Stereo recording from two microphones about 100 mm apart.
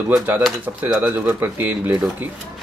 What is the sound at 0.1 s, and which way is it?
Speech, 15° right (ahead or behind).